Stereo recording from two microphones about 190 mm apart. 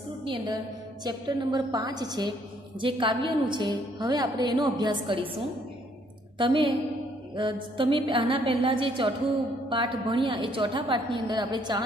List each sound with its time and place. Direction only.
1.0 s a woman's voice: 20° right (ahead or behind)
6.3 s a woman's voice: 25° right (ahead or behind)